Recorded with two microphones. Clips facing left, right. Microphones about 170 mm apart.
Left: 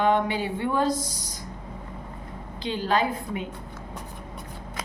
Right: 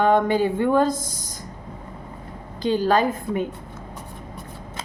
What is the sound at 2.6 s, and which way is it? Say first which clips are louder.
Speech: right 6 dB; 45° right (ahead or behind).